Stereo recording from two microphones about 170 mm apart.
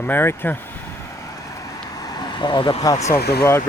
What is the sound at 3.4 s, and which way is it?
Speech, 15° left (ahead or behind).